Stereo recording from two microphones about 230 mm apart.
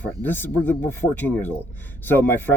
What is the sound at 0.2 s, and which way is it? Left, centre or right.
Speech, centre.